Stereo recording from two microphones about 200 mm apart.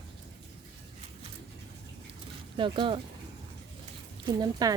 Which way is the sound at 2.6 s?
25° right (ahead or behind).